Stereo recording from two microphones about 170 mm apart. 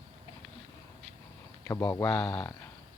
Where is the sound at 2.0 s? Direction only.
5° left (ahead or behind).